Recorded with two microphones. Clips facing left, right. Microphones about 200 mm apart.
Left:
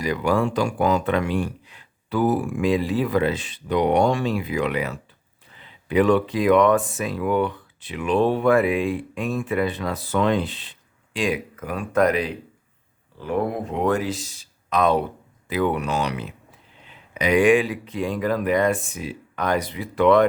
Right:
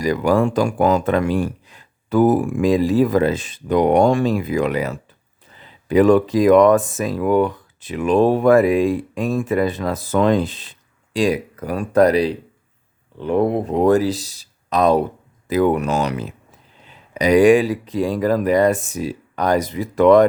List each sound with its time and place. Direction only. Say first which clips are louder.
0.0 s speech: right 5 dB; 45° right (ahead or behind)